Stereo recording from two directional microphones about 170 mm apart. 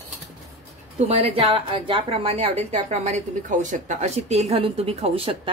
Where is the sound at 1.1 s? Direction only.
35° right (ahead or behind).